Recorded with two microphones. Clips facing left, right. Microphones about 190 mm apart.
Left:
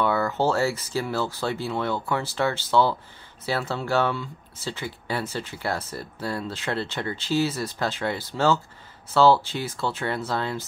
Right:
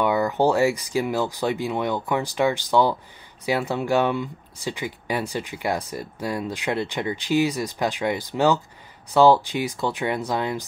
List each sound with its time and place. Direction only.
0.0 s speech: 15° right (ahead or behind)